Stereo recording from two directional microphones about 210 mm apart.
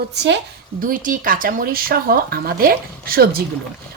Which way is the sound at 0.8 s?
40° right (ahead or behind).